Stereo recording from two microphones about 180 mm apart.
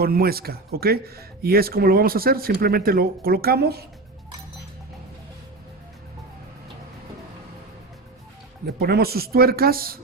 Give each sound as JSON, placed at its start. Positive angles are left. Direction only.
{"t": 0.0, "sound": "speech", "side_deg": -55}
{"t": 8.6, "sound": "speech", "side_deg": -60}